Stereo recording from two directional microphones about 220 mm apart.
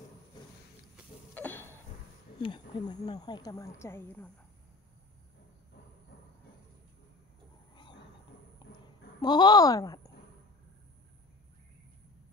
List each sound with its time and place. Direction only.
1.3 s a sound: 10° left (ahead or behind)
2.4 s speech: 20° left (ahead or behind)
9.2 s speech: 20° left (ahead or behind)